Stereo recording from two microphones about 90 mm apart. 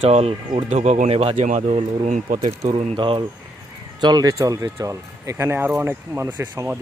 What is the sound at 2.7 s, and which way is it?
Speech, 70° right (ahead or behind).